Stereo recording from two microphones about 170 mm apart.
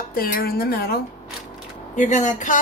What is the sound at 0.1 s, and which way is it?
Speech, 60° left (ahead or behind).